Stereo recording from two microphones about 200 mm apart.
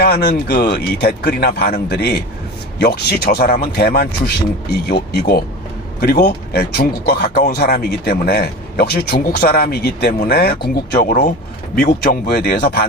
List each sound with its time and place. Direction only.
0.0 s speech: 55° left (ahead or behind)
11.0 s speech: 40° left (ahead or behind)